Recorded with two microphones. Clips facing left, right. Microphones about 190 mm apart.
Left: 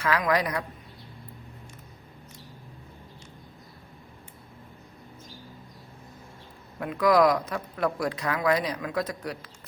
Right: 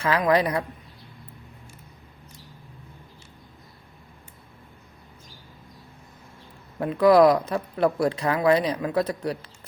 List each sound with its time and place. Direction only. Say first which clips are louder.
0.0 s speech: right 4 dB; 30° right (ahead or behind)
6.7 s speech: right 5 dB; 30° right (ahead or behind)